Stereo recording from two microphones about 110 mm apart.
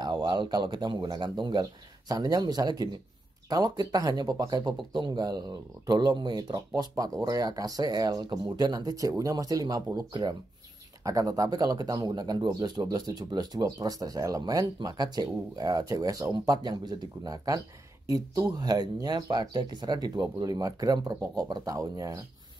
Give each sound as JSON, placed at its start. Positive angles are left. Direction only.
{"t": 0.0, "sound": "speech", "side_deg": -40}